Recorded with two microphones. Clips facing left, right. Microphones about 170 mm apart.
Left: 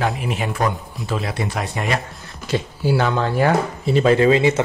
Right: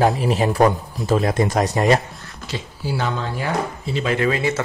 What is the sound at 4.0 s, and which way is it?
Speech, 30° left (ahead or behind).